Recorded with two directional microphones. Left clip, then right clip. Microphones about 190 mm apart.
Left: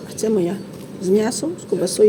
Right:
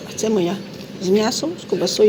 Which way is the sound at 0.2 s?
15° left (ahead or behind).